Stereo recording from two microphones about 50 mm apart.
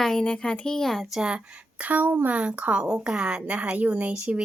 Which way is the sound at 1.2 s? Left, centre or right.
Centre.